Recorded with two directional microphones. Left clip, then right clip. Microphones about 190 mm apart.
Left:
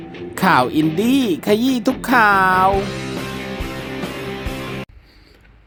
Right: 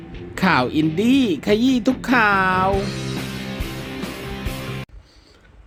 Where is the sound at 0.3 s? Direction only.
20° left (ahead or behind).